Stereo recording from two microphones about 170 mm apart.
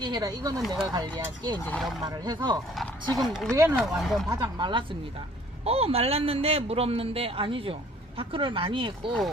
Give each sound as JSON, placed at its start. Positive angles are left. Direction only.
{"t": 0.0, "sound": "speech", "side_deg": -25}
{"t": 1.6, "sound": "speech", "side_deg": 10}
{"t": 2.0, "sound": "speech", "side_deg": -25}
{"t": 3.2, "sound": "speech", "side_deg": 0}
{"t": 3.5, "sound": "speech", "side_deg": -15}
{"t": 3.8, "sound": "speech", "side_deg": 0}
{"t": 4.4, "sound": "a man's voice", "side_deg": -30}